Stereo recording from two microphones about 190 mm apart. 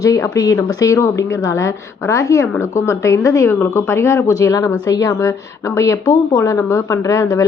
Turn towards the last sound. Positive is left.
turn(degrees=15)  # may be behind; listen again after turning